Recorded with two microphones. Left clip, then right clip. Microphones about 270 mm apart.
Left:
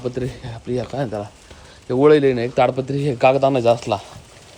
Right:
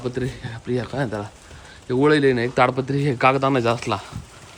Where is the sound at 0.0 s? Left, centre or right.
Centre.